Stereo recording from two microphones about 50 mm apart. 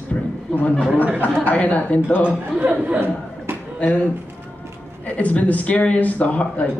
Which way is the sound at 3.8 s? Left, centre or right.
Left.